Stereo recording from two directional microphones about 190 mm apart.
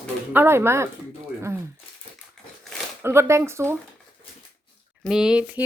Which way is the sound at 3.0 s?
15° right (ahead or behind).